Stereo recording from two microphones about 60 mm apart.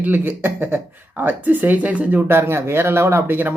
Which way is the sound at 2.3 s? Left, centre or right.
Right.